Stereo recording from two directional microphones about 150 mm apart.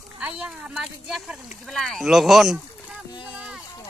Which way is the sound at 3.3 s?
5° right (ahead or behind).